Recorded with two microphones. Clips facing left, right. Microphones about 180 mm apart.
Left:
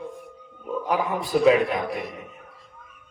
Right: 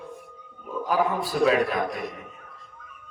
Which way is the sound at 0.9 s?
20° left (ahead or behind).